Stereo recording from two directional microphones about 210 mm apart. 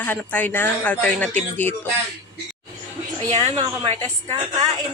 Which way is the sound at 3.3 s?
30° right (ahead or behind).